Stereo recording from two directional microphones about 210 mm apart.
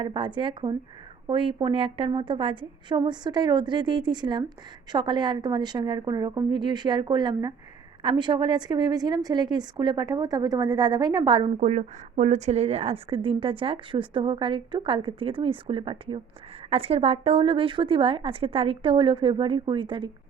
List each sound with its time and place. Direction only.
0.0 s a woman's voice: 25° right (ahead or behind)